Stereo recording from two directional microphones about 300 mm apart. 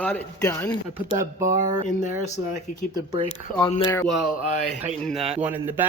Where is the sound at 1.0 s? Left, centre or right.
Centre.